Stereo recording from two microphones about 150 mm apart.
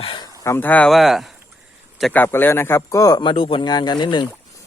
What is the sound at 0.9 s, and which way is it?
Speech, centre (ahead or behind).